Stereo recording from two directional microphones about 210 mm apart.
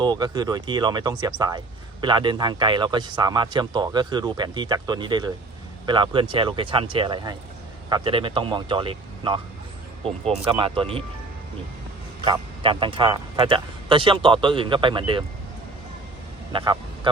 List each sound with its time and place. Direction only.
0.0 s speech: 20° right (ahead or behind)
12.2 s speech: 20° right (ahead or behind)
16.5 s vehicle: 20° right (ahead or behind)